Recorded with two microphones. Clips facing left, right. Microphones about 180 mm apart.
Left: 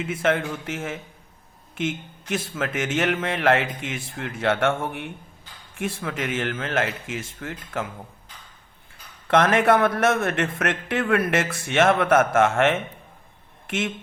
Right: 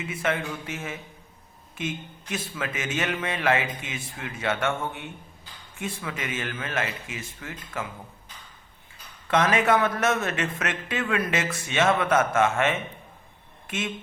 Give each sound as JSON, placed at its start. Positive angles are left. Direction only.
{"t": 0.0, "sound": "a man's voice", "side_deg": 90}
{"t": 2.3, "sound": "speech", "side_deg": 70}
{"t": 5.8, "sound": "speech", "side_deg": 70}
{"t": 7.3, "sound": "speech", "side_deg": 55}
{"t": 9.2, "sound": "speech", "side_deg": 60}